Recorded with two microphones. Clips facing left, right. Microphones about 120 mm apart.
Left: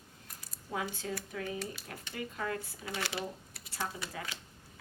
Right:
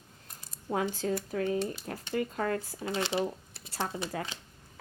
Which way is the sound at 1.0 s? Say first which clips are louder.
Right 8 dB; 50° right (ahead or behind).